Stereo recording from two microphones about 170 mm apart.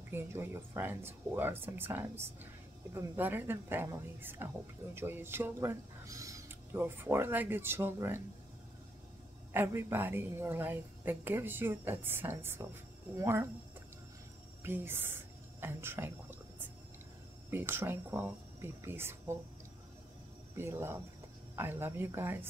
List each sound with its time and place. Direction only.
0.1 s speech: 15° right (ahead or behind)
9.5 s speech: 15° right (ahead or behind)
14.6 s speech: 15° right (ahead or behind)
17.5 s speech: 15° right (ahead or behind)
20.5 s speech: 15° right (ahead or behind)